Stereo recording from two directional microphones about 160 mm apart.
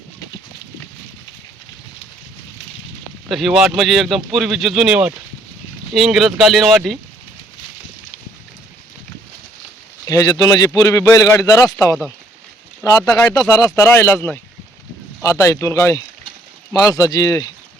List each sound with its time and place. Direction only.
3.2 s speech: centre (ahead or behind)
10.1 s a man's voice: 25° left (ahead or behind)